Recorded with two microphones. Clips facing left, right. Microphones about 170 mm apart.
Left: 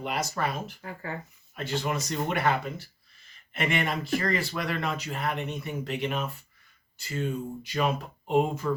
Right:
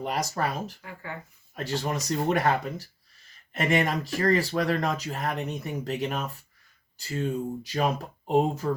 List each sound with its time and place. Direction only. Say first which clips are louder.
0.0 s speech: right 2 dB; 40° right (ahead or behind)
0.8 s speech: left 3 dB; 40° left (ahead or behind)
1.5 s speech: even; 35° right (ahead or behind)